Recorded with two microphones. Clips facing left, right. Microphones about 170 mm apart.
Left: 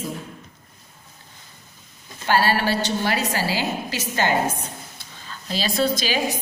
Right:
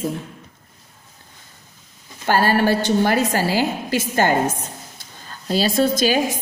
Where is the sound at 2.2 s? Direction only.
45° right (ahead or behind).